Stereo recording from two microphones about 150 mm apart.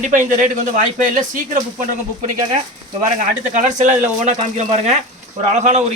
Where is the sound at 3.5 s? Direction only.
55° right (ahead or behind).